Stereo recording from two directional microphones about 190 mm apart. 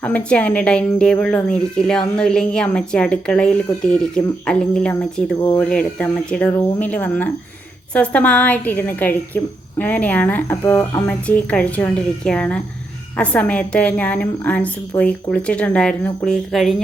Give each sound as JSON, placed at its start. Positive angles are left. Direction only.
{"t": 0.0, "sound": "a woman's voice", "side_deg": 5}